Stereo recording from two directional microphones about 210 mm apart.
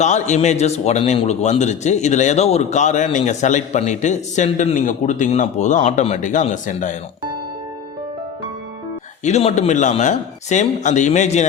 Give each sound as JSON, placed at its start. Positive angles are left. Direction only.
{"t": 0.0, "sound": "a man's voice", "side_deg": 35}
{"t": 9.2, "sound": "a man's voice", "side_deg": 30}